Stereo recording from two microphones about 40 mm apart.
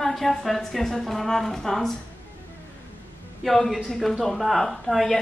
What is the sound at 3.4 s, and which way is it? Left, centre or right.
A woman's voice, centre.